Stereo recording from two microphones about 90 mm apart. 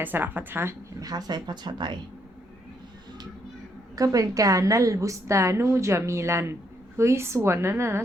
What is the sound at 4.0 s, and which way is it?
A woman's voice, 40° right (ahead or behind).